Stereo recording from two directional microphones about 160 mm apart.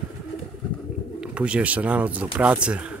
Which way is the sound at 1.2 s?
5° right (ahead or behind).